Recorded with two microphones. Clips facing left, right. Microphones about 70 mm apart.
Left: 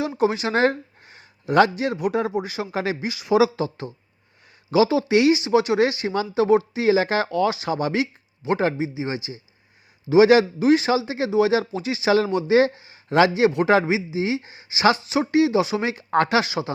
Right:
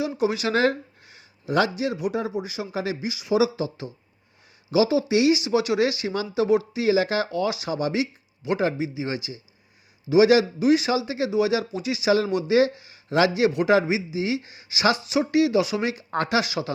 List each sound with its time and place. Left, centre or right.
0.0 s speech: left
0.3 s a sound: left
1.5 s a man's voice: left
10.1 s a man's voice: left
16.4 s a man's voice: left